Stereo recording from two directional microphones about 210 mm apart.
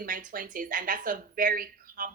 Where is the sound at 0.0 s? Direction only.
40° right (ahead or behind).